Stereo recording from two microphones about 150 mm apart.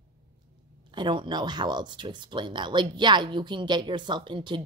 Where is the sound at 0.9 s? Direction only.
30° right (ahead or behind).